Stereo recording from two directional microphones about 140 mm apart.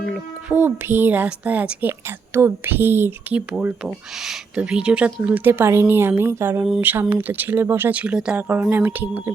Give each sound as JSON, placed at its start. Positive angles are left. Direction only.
{"t": 0.4, "sound": "a woman's voice", "side_deg": -15}